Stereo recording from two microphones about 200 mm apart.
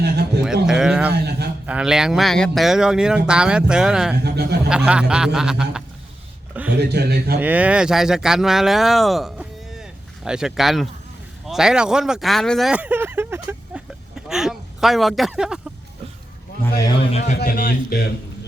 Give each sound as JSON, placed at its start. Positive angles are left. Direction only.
{"t": 0.0, "sound": "speech", "side_deg": -55}
{"t": 0.4, "sound": "a sound", "side_deg": -5}
{"t": 1.1, "sound": "a sound", "side_deg": -55}
{"t": 1.6, "sound": "speech", "side_deg": -5}
{"t": 4.2, "sound": "speech", "side_deg": -55}
{"t": 4.9, "sound": "speech", "side_deg": -5}
{"t": 6.7, "sound": "speech", "side_deg": -55}
{"t": 7.3, "sound": "speech", "side_deg": -10}
{"t": 17.4, "sound": "a man's voice", "side_deg": 45}